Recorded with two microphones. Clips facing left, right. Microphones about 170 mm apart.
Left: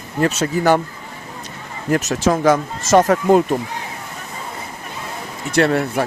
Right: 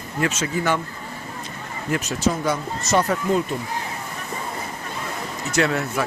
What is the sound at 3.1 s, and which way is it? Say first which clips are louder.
Speech: left 8 dB; 75° left (ahead or behind).